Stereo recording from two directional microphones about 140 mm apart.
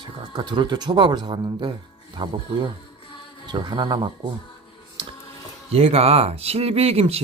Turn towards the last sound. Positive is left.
turn(degrees=-45)  # may be behind; listen again after turning